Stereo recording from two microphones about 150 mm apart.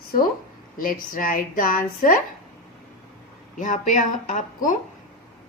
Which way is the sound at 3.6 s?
60° left (ahead or behind).